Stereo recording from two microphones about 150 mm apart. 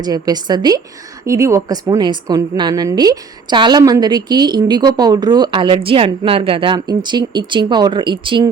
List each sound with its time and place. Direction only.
0.0 s speech: 25° right (ahead or behind)